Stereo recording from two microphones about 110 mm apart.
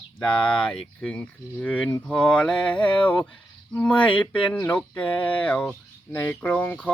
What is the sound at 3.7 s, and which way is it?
Speech, 15° left (ahead or behind).